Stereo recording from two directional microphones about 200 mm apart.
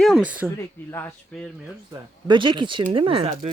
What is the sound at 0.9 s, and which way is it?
Speech, 10° left (ahead or behind).